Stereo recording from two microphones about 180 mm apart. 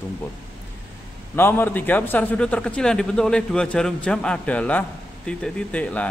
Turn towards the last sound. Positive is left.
turn(degrees=5)  # may be behind; listen again after turning